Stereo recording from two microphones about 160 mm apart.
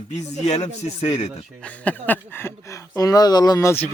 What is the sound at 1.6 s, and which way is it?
Speech, 10° left (ahead or behind).